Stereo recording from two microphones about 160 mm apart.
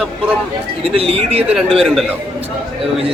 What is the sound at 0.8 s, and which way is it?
Speech, 35° right (ahead or behind).